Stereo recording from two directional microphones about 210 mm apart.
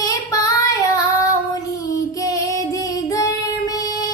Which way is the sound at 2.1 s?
15° left (ahead or behind).